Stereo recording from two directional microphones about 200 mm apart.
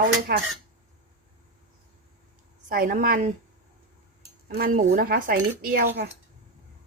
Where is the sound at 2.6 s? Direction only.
45° right (ahead or behind).